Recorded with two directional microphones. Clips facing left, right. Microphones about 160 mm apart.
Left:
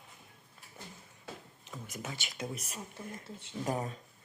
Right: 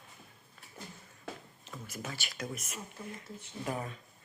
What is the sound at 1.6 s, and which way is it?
Speech, 20° left (ahead or behind).